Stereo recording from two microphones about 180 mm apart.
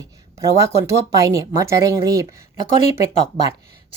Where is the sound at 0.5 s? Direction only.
15° right (ahead or behind).